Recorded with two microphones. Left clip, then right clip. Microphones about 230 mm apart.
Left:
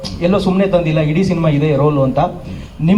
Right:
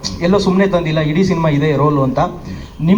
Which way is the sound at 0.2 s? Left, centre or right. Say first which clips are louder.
Right 1 dB; left.